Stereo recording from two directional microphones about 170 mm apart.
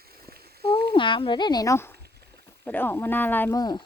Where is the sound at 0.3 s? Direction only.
65° right (ahead or behind).